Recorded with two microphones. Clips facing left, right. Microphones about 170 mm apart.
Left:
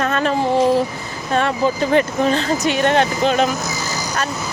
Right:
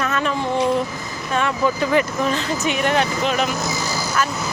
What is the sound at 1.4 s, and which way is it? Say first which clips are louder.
A woman's voice: left 2 dB; 35° left (ahead or behind).